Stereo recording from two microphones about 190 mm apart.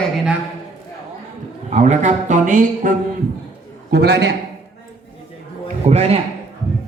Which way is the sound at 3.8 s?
60° right (ahead or behind).